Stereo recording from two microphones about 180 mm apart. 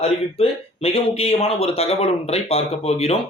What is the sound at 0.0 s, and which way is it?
Speech, 35° left (ahead or behind).